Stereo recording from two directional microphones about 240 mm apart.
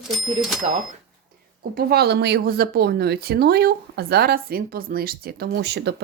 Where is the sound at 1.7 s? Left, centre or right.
Right.